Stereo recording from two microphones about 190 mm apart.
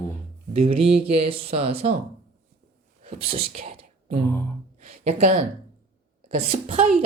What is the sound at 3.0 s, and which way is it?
Speech, 30° right (ahead or behind).